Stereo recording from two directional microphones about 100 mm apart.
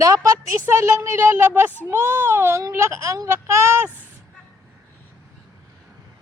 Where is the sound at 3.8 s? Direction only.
15° right (ahead or behind).